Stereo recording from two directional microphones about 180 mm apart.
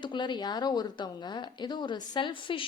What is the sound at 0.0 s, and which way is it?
A woman's voice, 25° left (ahead or behind).